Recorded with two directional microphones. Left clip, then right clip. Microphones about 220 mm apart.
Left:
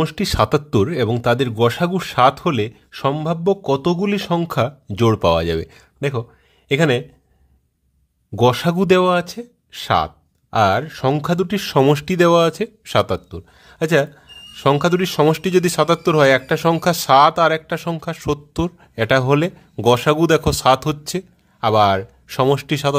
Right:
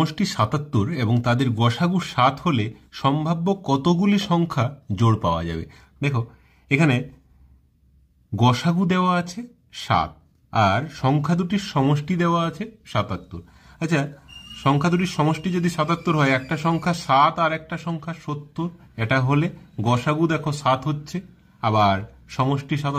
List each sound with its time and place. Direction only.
0.0 s speech: 30° left (ahead or behind)
8.4 s speech: 35° left (ahead or behind)